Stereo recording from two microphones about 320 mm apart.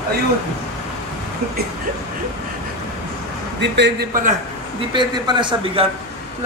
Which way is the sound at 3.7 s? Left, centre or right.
Right.